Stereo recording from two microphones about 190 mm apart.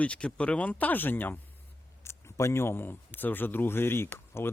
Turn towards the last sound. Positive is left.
turn(degrees=10)  # may be behind; listen again after turning